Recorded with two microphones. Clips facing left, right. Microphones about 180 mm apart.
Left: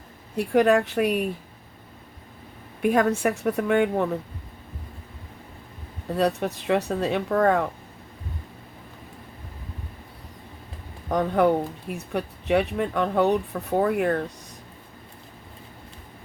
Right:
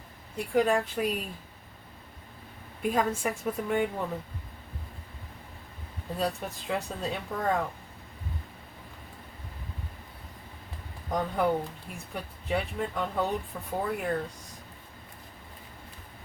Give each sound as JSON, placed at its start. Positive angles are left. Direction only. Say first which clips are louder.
{"t": 0.3, "sound": "speech", "louder": "left 6 dB", "side_deg": 70}
{"t": 2.8, "sound": "speech", "louder": "left 7 dB", "side_deg": 70}
{"t": 6.1, "sound": "speech", "louder": "left 8 dB", "side_deg": 70}
{"t": 11.1, "sound": "speech", "louder": "left 7 dB", "side_deg": 70}